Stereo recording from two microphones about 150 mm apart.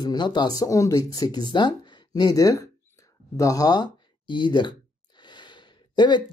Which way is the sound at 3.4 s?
25° left (ahead or behind).